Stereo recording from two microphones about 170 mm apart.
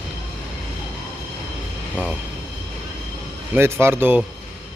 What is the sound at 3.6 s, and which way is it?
Speech, 15° right (ahead or behind).